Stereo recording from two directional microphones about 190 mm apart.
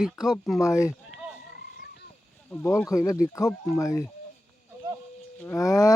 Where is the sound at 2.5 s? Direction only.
10° left (ahead or behind).